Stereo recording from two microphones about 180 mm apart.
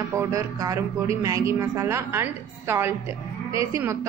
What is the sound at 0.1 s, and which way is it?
Speech, 15° right (ahead or behind).